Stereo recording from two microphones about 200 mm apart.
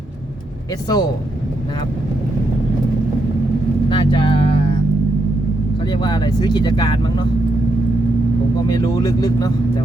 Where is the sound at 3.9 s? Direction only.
25° left (ahead or behind).